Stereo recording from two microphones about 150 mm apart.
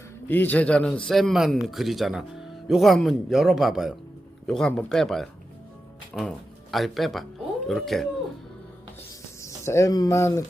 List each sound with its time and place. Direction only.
0.3 s speech: 10° left (ahead or behind)
9.4 s speech: 20° left (ahead or behind)